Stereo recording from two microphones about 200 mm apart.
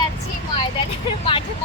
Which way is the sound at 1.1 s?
25° left (ahead or behind).